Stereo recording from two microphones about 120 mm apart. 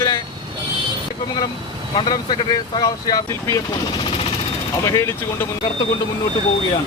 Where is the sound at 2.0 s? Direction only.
40° left (ahead or behind).